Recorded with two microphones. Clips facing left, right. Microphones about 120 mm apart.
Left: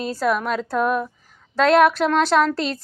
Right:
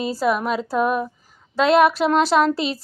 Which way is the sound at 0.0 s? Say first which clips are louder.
Right 1 dB; 5° right (ahead or behind).